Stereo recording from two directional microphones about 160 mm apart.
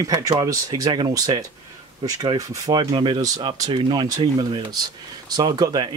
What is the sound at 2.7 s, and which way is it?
Speech, 30° right (ahead or behind).